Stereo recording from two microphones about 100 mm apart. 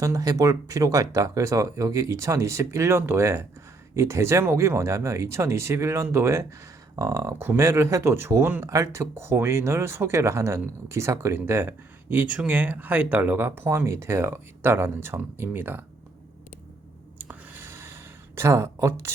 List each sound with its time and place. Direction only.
0.0 s speech: 35° right (ahead or behind)
12.1 s speech: 15° right (ahead or behind)
17.2 s a sound: 20° right (ahead or behind)